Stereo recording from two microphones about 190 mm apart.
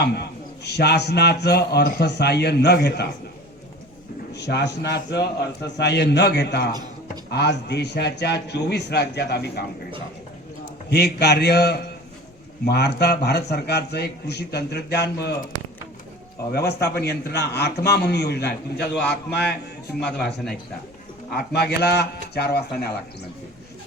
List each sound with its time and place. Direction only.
0.0 s a man's voice: 60° left (ahead or behind)
4.4 s a man's voice: 65° left (ahead or behind)
10.8 s a man's voice: 60° left (ahead or behind)
16.5 s a man's voice: 60° left (ahead or behind)
21.3 s a man's voice: 60° left (ahead or behind)